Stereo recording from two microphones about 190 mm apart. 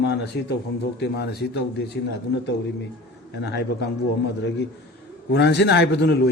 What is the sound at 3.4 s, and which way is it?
Speech, 60° left (ahead or behind).